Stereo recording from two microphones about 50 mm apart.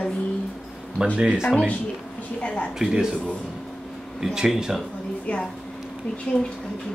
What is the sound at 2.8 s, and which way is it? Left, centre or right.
Speech, centre.